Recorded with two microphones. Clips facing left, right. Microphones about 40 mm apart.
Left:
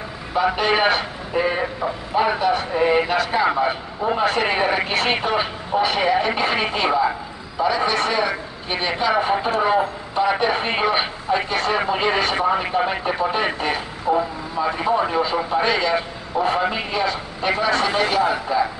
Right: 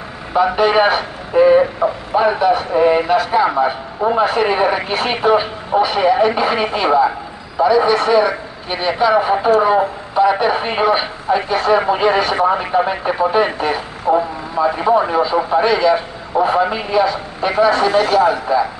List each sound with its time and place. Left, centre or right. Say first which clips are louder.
0.4 s a man's voice: right 5 dB; centre
1.8 s speech: right 7 dB; right
2.1 s a man's voice: right 4 dB; centre
14.1 s speech: right 5 dB; centre
15.6 s a man's voice: right 6 dB; centre
18.0 s a man's voice: right 6 dB; centre